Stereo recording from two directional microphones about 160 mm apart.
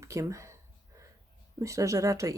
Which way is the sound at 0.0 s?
20° right (ahead or behind).